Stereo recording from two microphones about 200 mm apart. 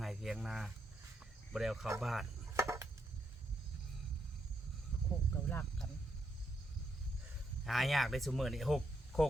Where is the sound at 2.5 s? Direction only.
15° right (ahead or behind).